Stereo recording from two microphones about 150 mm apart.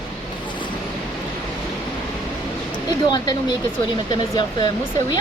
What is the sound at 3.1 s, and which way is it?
Speech, 25° left (ahead or behind).